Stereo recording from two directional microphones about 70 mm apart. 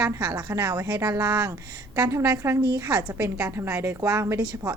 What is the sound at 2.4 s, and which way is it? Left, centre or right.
A woman's voice, right.